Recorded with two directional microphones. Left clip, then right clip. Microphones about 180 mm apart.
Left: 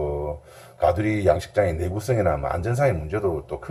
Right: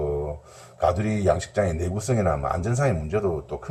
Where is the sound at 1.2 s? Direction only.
25° left (ahead or behind).